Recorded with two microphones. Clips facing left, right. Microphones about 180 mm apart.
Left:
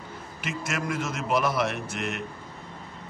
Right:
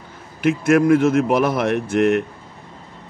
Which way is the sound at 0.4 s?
55° right (ahead or behind).